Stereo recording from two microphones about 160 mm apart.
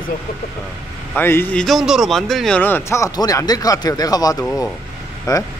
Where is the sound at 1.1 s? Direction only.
10° left (ahead or behind).